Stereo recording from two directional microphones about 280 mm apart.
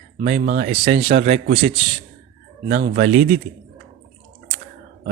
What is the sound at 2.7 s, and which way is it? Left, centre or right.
Speech, right.